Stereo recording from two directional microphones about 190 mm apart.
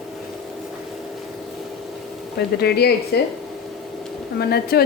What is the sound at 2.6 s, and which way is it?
Speech, 60° left (ahead or behind).